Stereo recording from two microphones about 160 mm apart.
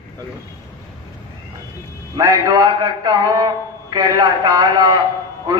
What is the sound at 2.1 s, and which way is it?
A man's voice, 20° right (ahead or behind).